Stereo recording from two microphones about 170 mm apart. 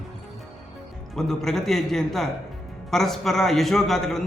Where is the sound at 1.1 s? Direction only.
Centre (ahead or behind).